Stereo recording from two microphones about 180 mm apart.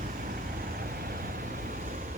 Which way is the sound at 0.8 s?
55° right (ahead or behind).